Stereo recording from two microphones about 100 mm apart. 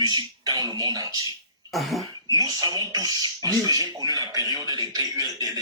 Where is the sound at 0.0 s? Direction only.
45° right (ahead or behind).